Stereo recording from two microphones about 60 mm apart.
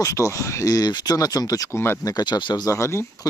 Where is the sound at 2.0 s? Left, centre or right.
Left.